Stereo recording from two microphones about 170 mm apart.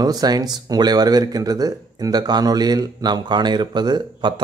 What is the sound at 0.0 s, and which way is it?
A man's voice, 20° right (ahead or behind).